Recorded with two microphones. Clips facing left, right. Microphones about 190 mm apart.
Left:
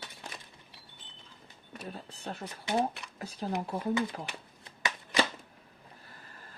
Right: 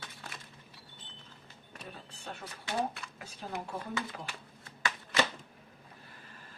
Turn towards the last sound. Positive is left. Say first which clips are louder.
# left 1 dB
turn(degrees=15)  # may be behind; listen again after turning